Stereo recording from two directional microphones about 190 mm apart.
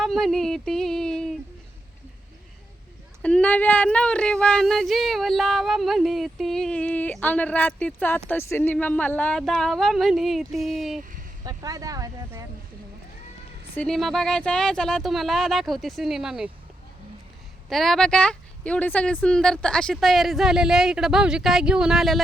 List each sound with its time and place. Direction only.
0.0 s a sound: centre (ahead or behind)
3.2 s speech: 5° left (ahead or behind)
11.4 s speech: 20° right (ahead or behind)
13.7 s speech: centre (ahead or behind)
17.7 s speech: centre (ahead or behind)